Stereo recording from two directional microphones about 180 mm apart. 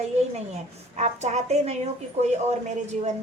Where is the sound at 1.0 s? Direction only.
40° right (ahead or behind).